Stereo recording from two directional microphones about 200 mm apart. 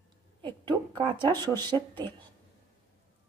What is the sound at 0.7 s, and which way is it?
Speech, 25° right (ahead or behind).